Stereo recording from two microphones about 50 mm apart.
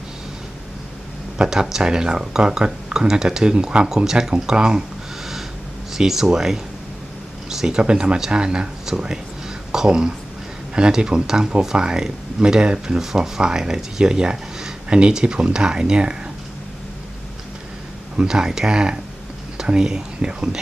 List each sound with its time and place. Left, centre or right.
1.4 s speech: centre
5.2 s a sound: centre
5.9 s speech: centre
13.0 s speech: centre
18.2 s speech: centre